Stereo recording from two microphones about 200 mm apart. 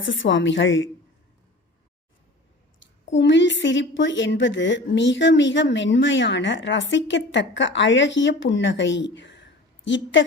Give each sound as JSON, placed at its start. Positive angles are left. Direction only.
{"t": 0.0, "sound": "a woman's voice", "side_deg": 70}
{"t": 2.8, "sound": "a woman's voice", "side_deg": 65}